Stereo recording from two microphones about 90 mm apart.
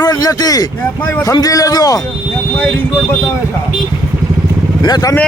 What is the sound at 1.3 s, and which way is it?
Speech, 45° left (ahead or behind).